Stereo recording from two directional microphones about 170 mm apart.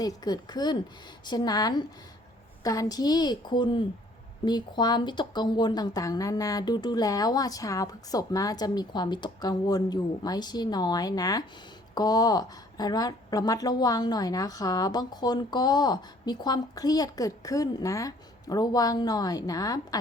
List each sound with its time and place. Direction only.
0.0 s a woman's voice: 25° left (ahead or behind)